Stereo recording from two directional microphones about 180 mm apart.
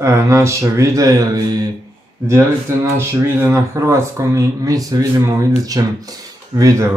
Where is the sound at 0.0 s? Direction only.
15° right (ahead or behind).